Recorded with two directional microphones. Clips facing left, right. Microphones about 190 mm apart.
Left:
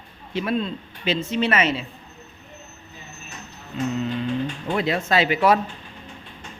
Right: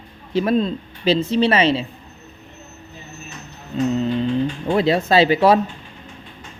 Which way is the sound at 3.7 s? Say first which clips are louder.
Right 5 dB; 35° right (ahead or behind).